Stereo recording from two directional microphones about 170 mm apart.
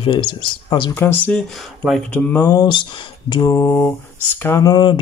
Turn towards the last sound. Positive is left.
turn(degrees=25)  # may be behind; listen again after turning